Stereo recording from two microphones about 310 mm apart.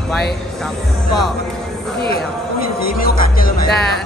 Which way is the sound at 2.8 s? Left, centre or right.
Left.